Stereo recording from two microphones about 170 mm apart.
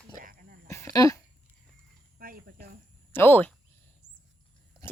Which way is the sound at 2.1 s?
60° right (ahead or behind).